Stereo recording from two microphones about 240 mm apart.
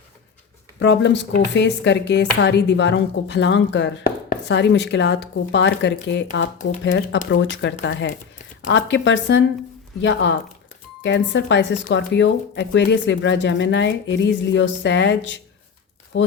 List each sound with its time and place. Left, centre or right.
0.8 s speech: left